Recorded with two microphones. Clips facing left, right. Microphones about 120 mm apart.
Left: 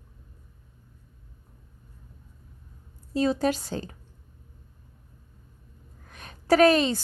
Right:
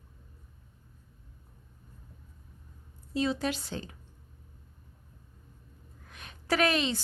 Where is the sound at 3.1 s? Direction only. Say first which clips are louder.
Left 6 dB; 40° left (ahead or behind).